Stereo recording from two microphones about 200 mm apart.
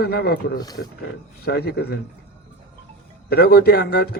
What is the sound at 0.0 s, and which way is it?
A man's voice, 55° left (ahead or behind).